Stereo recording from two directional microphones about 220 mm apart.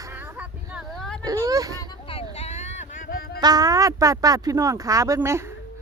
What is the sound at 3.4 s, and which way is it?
Speech, 15° right (ahead or behind).